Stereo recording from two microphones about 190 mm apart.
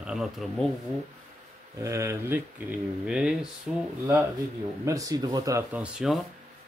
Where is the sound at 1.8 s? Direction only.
15° right (ahead or behind).